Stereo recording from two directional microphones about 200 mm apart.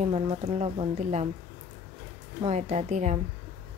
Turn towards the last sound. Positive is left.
turn(degrees=-35)  # may be behind; listen again after turning